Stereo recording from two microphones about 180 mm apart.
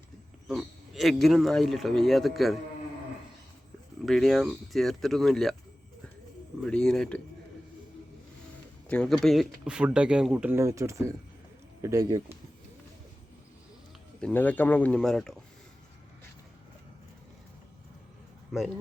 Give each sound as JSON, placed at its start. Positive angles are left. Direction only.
{"t": 0.4, "sound": "speech", "side_deg": 0}
{"t": 4.0, "sound": "speech", "side_deg": 0}
{"t": 6.6, "sound": "speech", "side_deg": 5}
{"t": 8.9, "sound": "speech", "side_deg": 5}
{"t": 14.2, "sound": "speech", "side_deg": 5}
{"t": 18.5, "sound": "speech", "side_deg": 0}